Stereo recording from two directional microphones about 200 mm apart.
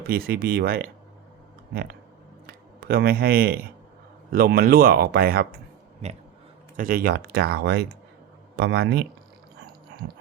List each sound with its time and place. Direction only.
0.1 s speech: 50° right (ahead or behind)
6.7 s speech: 45° right (ahead or behind)